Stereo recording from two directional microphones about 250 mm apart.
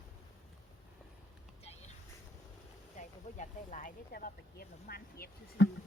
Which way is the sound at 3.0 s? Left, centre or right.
Left.